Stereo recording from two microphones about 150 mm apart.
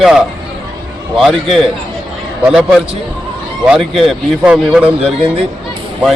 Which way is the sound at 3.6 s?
5° right (ahead or behind).